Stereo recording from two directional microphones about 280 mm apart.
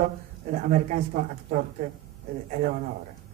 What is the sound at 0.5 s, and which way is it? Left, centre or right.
Speech, right.